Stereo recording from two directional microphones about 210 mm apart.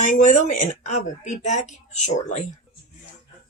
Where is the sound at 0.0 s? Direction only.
35° left (ahead or behind).